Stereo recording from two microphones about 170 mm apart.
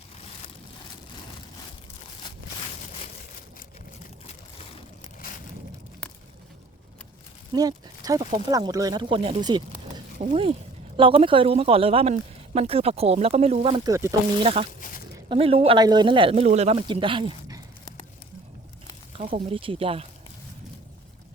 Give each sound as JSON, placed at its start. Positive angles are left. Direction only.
{"t": 7.5, "sound": "speech", "side_deg": -20}
{"t": 14.4, "sound": "speech", "side_deg": -35}
{"t": 16.3, "sound": "speech", "side_deg": -40}
{"t": 16.7, "sound": "speech", "side_deg": -30}
{"t": 19.1, "sound": "speech", "side_deg": -35}